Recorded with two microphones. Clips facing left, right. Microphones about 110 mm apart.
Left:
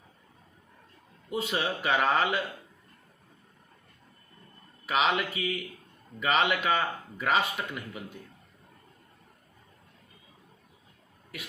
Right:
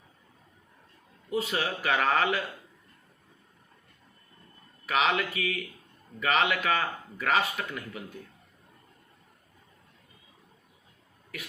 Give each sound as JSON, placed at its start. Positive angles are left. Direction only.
{"t": 1.3, "sound": "speech", "side_deg": 25}
{"t": 4.9, "sound": "speech", "side_deg": 25}
{"t": 7.6, "sound": "speech", "side_deg": 15}